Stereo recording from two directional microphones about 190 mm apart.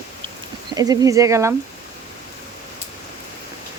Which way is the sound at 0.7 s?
20° right (ahead or behind).